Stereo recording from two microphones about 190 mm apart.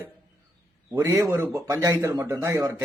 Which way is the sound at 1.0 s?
15° right (ahead or behind).